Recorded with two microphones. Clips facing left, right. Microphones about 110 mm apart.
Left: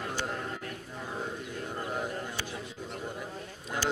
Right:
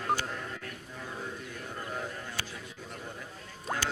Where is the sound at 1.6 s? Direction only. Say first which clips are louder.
Left 4 dB; 25° left (ahead or behind).